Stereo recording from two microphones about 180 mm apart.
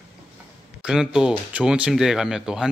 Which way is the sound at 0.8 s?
5° right (ahead or behind).